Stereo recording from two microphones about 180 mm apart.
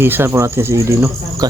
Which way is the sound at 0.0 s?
10° right (ahead or behind).